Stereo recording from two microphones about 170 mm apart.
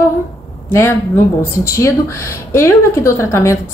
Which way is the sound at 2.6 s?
15° left (ahead or behind).